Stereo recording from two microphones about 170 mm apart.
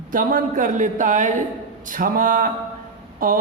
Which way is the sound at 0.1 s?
55° right (ahead or behind).